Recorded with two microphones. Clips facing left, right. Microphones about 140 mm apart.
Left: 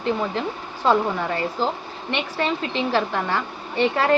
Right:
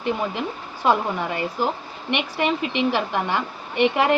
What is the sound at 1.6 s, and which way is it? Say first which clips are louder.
A woman's voice: even; 15° right (ahead or behind).